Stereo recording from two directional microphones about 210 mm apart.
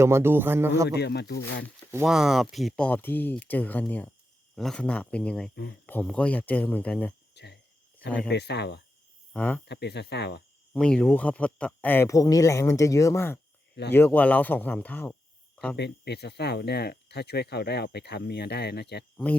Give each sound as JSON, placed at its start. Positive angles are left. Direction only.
{"t": 0.0, "sound": "speech", "side_deg": -10}
{"t": 0.9, "sound": "speech", "side_deg": 50}
{"t": 1.9, "sound": "speech", "side_deg": -5}
{"t": 7.3, "sound": "cricket", "side_deg": 55}
{"t": 8.3, "sound": "speech", "side_deg": 55}
{"t": 9.3, "sound": "speech", "side_deg": 10}
{"t": 9.6, "sound": "speech", "side_deg": 55}
{"t": 10.8, "sound": "speech", "side_deg": 5}
{"t": 15.7, "sound": "speech", "side_deg": 50}
{"t": 19.1, "sound": "speech", "side_deg": 5}